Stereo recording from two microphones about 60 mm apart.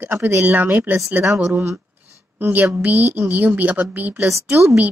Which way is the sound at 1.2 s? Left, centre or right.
Right.